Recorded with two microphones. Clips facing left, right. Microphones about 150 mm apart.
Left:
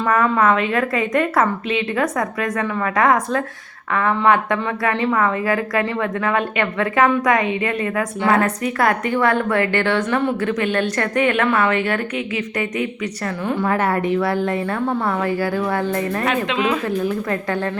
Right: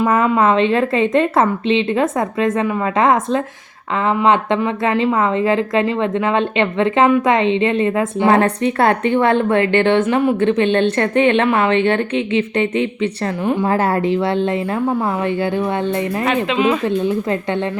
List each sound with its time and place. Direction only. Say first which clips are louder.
0.0 s a woman's voice: right 3 dB; 25° right (ahead or behind)
13.4 s a woman's voice: right 4 dB; 15° right (ahead or behind)
13.7 s a woman's voice: right 1 dB; 30° right (ahead or behind)
16.2 s speech: right 6 dB; centre (ahead or behind)
16.8 s a woman's voice: right 4 dB; 25° right (ahead or behind)